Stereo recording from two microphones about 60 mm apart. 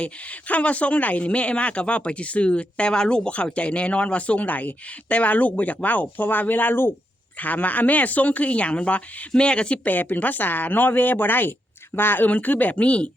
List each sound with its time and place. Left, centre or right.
0.0 s speech: left
9.8 s speech: left